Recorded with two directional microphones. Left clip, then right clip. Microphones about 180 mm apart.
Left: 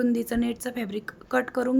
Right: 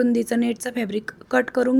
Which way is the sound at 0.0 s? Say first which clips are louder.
Right 5 dB; 15° right (ahead or behind).